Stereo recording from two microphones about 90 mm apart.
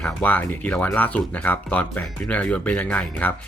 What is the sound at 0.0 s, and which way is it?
Speech, 20° left (ahead or behind).